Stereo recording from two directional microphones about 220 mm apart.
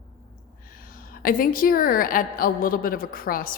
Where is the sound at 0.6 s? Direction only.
40° left (ahead or behind).